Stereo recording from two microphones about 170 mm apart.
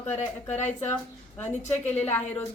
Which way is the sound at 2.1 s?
10° left (ahead or behind).